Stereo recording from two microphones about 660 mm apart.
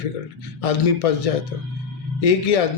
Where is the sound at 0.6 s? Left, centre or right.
Left.